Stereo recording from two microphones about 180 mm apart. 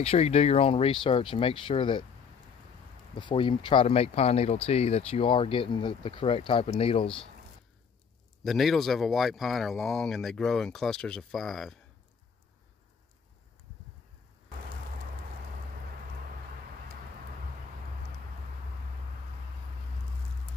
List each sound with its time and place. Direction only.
0.0 s speech: 35° left (ahead or behind)
3.2 s speech: 25° left (ahead or behind)
8.5 s speech: centre (ahead or behind)